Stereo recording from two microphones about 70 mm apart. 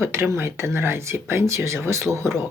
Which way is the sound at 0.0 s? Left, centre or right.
Right.